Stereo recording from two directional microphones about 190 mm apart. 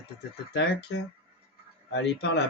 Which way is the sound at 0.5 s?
65° left (ahead or behind).